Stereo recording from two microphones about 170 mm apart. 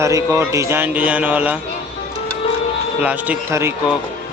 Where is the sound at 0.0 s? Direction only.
20° right (ahead or behind).